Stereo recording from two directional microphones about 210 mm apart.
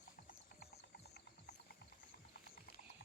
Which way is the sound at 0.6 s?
50° left (ahead or behind).